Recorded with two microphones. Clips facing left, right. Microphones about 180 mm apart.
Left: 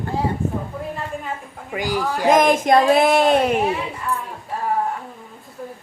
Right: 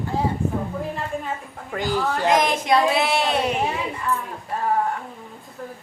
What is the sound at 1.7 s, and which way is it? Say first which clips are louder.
Speech: left 1 dB; 10° left (ahead or behind).